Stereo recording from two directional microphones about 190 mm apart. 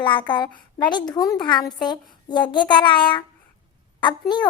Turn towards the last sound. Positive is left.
turn(degrees=20)  # may be behind; listen again after turning